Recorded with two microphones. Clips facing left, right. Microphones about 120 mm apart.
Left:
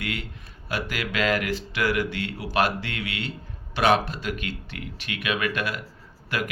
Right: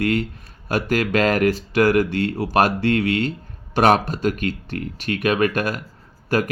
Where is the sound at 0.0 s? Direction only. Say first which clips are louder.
Right 12 dB; 40° right (ahead or behind).